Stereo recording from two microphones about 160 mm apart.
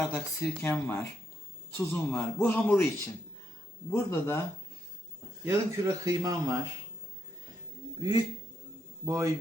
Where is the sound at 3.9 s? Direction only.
15° left (ahead or behind).